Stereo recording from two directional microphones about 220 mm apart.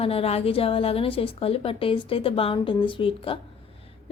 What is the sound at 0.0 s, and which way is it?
A woman's voice, 25° left (ahead or behind).